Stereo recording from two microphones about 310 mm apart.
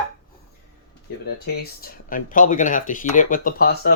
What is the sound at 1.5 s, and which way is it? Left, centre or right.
Speech, left.